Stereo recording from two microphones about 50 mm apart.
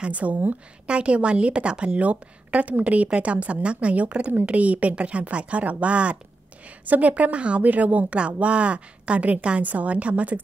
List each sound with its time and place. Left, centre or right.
0.0 s a woman's voice: right